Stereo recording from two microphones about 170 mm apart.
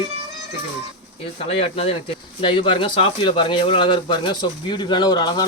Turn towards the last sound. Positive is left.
turn(degrees=25)  # may be behind; listen again after turning